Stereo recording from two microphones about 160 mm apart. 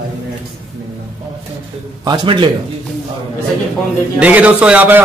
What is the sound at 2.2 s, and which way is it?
Speech, 30° right (ahead or behind).